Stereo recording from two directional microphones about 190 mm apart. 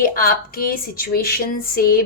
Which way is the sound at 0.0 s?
50° left (ahead or behind).